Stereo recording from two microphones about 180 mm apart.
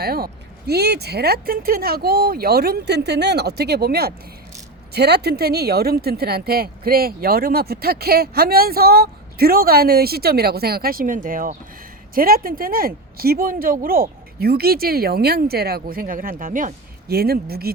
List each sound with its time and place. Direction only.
0.0 s speech: 60° right (ahead or behind)